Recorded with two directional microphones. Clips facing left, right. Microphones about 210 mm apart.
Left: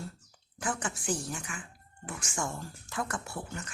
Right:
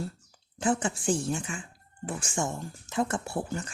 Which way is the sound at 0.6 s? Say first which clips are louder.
Right 8 dB; 25° right (ahead or behind).